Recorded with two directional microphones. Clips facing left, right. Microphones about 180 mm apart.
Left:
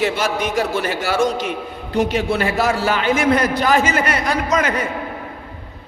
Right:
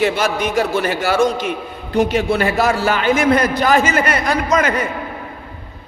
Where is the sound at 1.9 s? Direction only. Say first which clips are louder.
Right 2 dB; 50° right (ahead or behind).